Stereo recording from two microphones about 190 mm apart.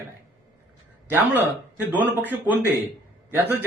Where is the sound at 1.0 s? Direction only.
10° right (ahead or behind).